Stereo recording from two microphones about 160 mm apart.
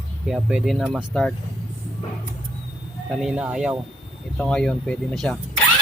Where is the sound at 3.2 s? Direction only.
5° right (ahead or behind).